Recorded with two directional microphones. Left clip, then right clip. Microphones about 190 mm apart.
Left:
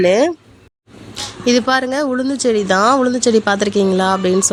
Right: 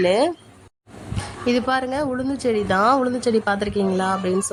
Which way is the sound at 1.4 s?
15° left (ahead or behind).